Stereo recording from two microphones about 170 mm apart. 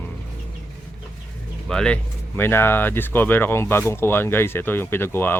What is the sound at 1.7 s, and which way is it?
Speech, 5° left (ahead or behind).